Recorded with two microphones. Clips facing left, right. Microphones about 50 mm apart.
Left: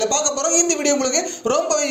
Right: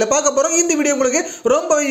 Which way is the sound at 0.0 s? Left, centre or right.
Right.